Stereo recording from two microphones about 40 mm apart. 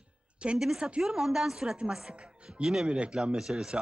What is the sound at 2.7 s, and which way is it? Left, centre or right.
Speech, centre.